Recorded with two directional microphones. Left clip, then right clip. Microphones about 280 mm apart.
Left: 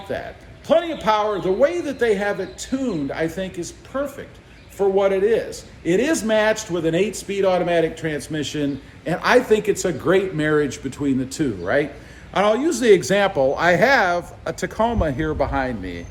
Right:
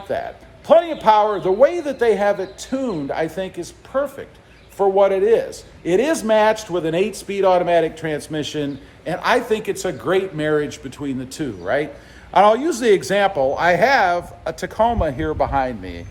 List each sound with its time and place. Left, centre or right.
0.1 s a man's voice: centre